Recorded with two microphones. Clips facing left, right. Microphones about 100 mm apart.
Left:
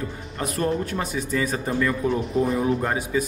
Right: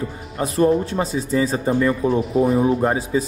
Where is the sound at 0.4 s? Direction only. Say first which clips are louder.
Right 7 dB; 25° right (ahead or behind).